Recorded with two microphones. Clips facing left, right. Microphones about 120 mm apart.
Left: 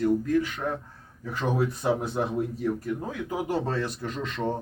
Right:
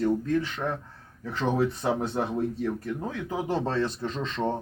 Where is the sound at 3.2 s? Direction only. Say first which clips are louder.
Even; 25° right (ahead or behind).